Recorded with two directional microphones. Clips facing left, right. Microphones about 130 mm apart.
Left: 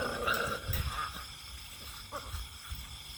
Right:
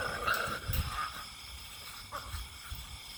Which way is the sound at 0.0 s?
10° left (ahead or behind).